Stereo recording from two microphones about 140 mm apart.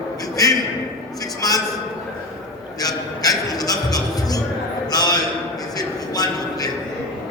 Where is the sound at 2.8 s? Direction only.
25° left (ahead or behind).